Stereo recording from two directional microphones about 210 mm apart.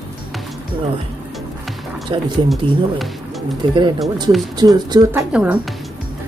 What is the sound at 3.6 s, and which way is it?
Speech, 20° right (ahead or behind).